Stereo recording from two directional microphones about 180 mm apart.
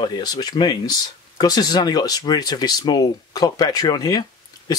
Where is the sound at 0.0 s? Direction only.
20° left (ahead or behind).